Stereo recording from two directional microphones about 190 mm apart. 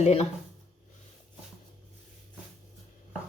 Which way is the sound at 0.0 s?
35° left (ahead or behind).